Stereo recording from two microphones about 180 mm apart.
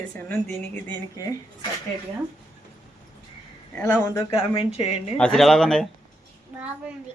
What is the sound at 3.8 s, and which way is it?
Speech, 15° left (ahead or behind).